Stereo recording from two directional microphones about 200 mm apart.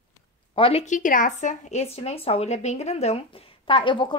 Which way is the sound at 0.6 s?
30° left (ahead or behind).